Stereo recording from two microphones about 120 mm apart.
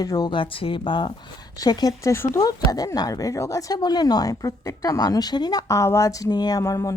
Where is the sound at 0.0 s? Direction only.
35° left (ahead or behind).